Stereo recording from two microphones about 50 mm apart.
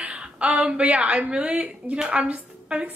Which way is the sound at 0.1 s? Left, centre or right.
Right.